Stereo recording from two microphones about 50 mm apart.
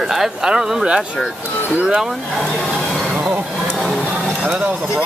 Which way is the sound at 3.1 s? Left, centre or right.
Right.